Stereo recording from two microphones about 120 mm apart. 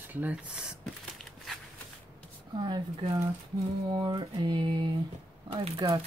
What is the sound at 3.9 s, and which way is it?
Mantra, 40° right (ahead or behind).